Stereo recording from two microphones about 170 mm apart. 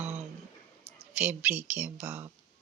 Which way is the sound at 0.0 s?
40° right (ahead or behind).